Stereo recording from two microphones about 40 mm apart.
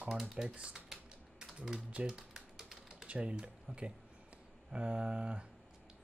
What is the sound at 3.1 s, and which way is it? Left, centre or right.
Speech, right.